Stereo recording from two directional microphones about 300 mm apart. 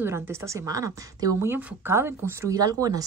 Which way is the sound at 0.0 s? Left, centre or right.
Centre.